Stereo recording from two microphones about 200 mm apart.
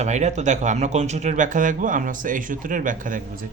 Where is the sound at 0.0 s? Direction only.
35° right (ahead or behind).